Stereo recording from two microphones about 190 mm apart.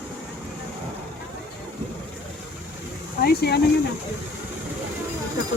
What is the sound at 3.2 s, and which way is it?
Speech, 55° left (ahead or behind).